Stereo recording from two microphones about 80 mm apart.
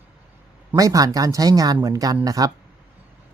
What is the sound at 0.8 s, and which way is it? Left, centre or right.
Speech, right.